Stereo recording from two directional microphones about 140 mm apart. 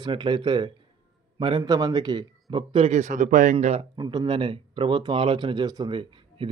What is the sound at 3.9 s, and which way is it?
Speech, 30° right (ahead or behind).